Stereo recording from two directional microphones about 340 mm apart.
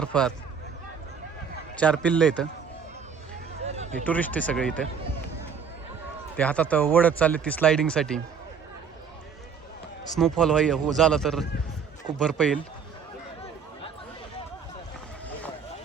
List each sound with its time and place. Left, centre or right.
0.0 s speech: centre
1.8 s speech: centre
3.7 s run: centre
4.0 s speech: centre
6.3 s speech: centre
10.2 s speech: centre